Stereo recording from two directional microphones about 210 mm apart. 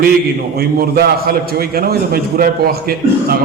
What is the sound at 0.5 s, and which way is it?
A man's voice, 50° right (ahead or behind).